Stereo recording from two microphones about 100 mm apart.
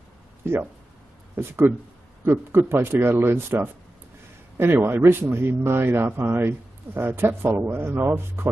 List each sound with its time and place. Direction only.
1.3 s a man's voice: 25° right (ahead or behind)